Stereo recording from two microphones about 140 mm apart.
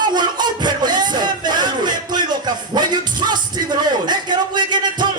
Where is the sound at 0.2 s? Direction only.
30° right (ahead or behind).